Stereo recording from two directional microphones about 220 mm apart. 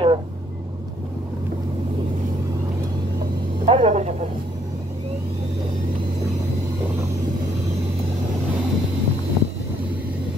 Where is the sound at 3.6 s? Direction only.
30° right (ahead or behind).